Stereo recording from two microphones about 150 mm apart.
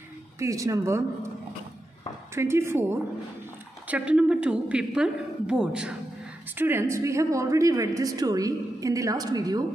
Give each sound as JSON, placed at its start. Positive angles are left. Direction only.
{"t": 0.4, "sound": "a woman's voice", "side_deg": -20}
{"t": 2.3, "sound": "a woman's voice", "side_deg": -15}